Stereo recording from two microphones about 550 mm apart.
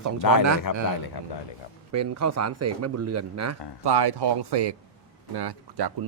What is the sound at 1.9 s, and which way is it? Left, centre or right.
Speech, right.